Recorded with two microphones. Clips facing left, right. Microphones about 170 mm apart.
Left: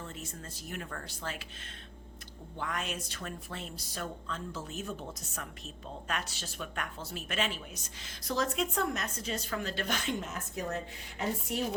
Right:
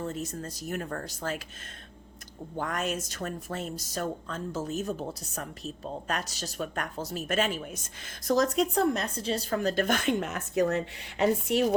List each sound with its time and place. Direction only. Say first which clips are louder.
0.0 s speech: right 9 dB; 40° right (ahead or behind)
2.6 s speech: right 6 dB; 45° right (ahead or behind); by 11.6 s 80° right